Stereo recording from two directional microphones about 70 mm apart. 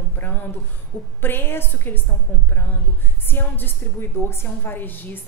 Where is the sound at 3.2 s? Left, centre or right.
Left.